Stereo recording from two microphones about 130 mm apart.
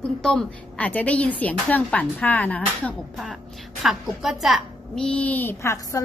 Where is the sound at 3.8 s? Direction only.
Centre (ahead or behind).